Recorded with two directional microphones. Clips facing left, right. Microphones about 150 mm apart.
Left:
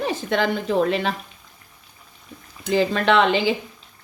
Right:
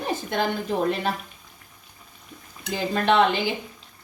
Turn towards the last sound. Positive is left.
turn(degrees=90)